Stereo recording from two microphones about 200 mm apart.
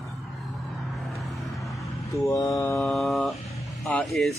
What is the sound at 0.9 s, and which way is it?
Vehicle, centre (ahead or behind).